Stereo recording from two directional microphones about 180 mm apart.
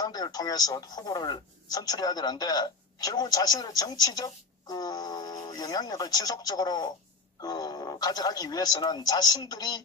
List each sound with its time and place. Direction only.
0.0 s speech: 20° left (ahead or behind)